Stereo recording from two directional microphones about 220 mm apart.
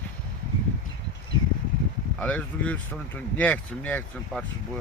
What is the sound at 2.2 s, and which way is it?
Speech, 5° left (ahead or behind).